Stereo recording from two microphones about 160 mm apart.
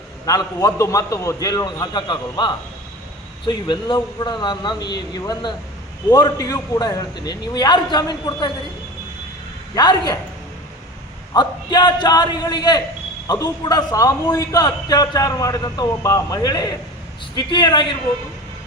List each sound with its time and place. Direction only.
0.3 s a man's voice: 20° left (ahead or behind)
9.7 s a man's voice: 25° left (ahead or behind)
11.3 s a man's voice: 25° left (ahead or behind)